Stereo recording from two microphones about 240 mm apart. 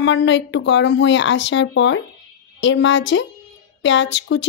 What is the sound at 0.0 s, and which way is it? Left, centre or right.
A woman's voice, left.